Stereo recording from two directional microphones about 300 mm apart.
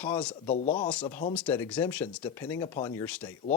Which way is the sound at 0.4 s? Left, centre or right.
Left.